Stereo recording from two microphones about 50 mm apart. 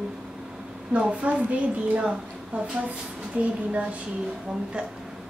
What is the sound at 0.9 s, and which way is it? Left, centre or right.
A woman's voice, right.